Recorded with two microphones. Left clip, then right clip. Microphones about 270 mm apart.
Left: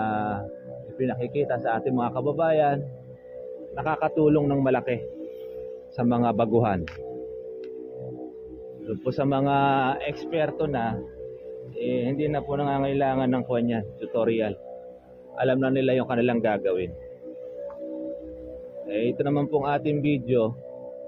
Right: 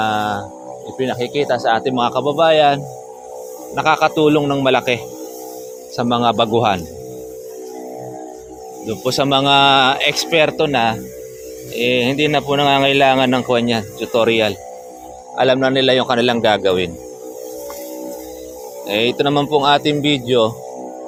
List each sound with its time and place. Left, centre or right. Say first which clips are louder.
0.0 s music: right 9 dB; right
0.9 s speech: right 8 dB; right
9.0 s speech: right 10 dB; right
18.9 s speech: right 9 dB; right